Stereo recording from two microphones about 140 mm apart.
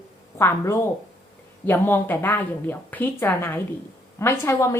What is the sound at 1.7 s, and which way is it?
A woman's voice, 15° left (ahead or behind).